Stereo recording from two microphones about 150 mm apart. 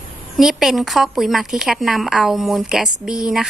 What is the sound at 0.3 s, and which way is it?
A woman's voice, 5° right (ahead or behind).